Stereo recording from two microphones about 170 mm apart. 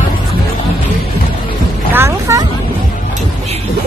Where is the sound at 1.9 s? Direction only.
15° right (ahead or behind).